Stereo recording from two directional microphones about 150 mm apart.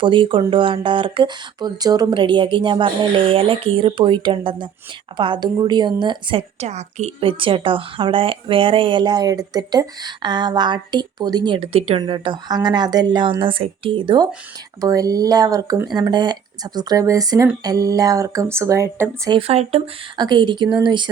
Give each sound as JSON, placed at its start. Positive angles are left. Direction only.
{"t": 0.0, "sound": "a woman's voice", "side_deg": -35}
{"t": 19.3, "sound": "a woman's voice", "side_deg": -40}
{"t": 20.1, "sound": "a woman's voice", "side_deg": -30}